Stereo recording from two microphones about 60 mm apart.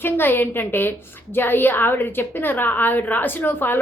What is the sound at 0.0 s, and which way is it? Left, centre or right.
Speech, left.